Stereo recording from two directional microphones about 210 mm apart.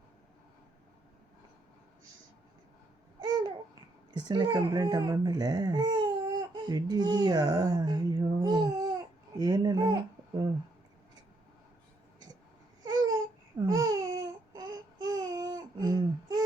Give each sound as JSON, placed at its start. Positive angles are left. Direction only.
{"t": 4.1, "sound": "speech", "side_deg": -20}
{"t": 12.8, "sound": "babbling", "side_deg": -20}